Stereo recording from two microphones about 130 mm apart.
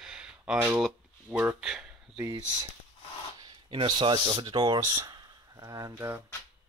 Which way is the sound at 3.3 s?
40° right (ahead or behind).